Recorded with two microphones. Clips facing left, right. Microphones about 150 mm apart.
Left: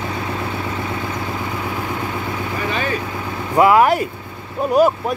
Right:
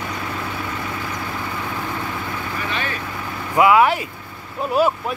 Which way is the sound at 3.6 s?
40° left (ahead or behind).